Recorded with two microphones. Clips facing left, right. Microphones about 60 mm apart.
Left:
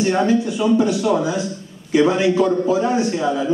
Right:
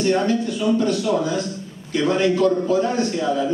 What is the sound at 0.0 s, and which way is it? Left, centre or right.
A man's voice, centre.